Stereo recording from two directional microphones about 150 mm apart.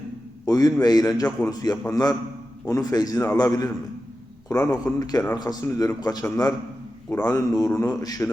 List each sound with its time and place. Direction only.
0.4 s a man's voice: 25° left (ahead or behind)